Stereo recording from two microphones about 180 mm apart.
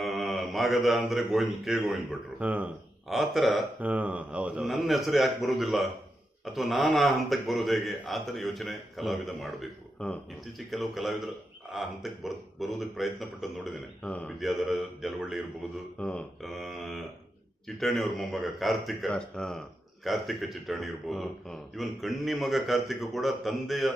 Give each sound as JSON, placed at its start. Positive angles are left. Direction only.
{"t": 0.0, "sound": "a man's voice", "side_deg": 0}